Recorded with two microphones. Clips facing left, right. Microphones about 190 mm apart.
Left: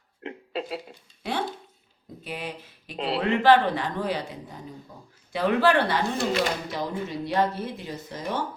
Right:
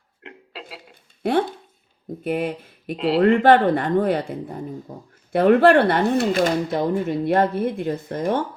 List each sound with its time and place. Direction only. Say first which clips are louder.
0.3 s a sound: left 7 dB; 20° left (ahead or behind)
2.2 s speech: right 11 dB; 55° right (ahead or behind)
4.9 s speech: right 9 dB; 45° right (ahead or behind)
5.3 s speech: right 8 dB; 55° right (ahead or behind)